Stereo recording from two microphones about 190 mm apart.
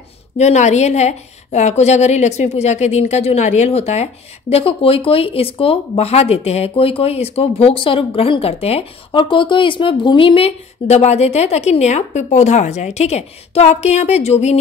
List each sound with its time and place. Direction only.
0.4 s a woman's voice: 35° left (ahead or behind)